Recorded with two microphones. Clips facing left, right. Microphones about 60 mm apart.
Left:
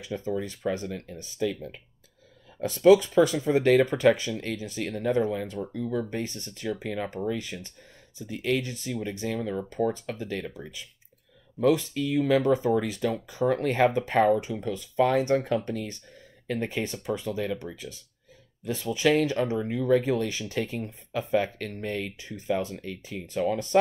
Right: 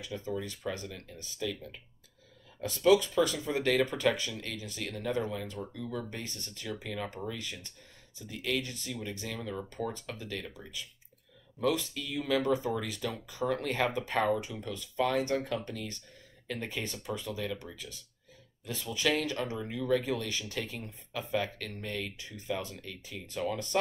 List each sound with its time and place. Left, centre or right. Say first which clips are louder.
0.1 s speech: left 7 dB; left
2.6 s speech: left 7 dB; left